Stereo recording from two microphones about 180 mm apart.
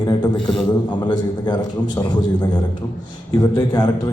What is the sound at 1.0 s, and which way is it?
A man's voice, 25° left (ahead or behind).